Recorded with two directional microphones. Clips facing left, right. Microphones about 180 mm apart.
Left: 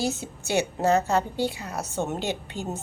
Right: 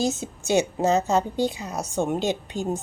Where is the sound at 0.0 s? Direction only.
20° right (ahead or behind).